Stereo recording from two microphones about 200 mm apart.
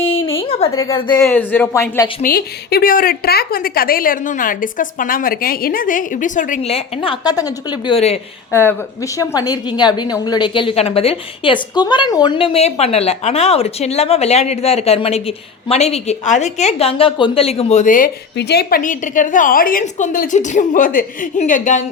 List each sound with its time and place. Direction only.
0.0 s a sound: 25° left (ahead or behind)
0.9 s a woman's voice: 25° left (ahead or behind)
1.2 s speech: 10° left (ahead or behind)
2.2 s a woman's voice: 50° left (ahead or behind); by 8.2 s 30° left (ahead or behind)
8.5 s a woman's voice: 15° left (ahead or behind); by 18.1 s 40° left (ahead or behind)
18.3 s a woman's voice: 55° left (ahead or behind); by 21.8 s 40° left (ahead or behind)